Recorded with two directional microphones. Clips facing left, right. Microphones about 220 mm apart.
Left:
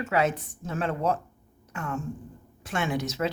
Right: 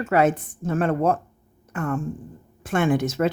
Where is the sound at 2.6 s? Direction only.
50° right (ahead or behind).